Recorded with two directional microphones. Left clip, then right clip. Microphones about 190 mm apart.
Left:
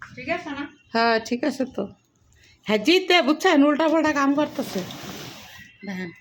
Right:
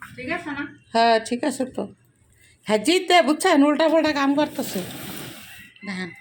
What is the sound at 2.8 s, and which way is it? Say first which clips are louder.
Speech: right 1 dB; 15° left (ahead or behind).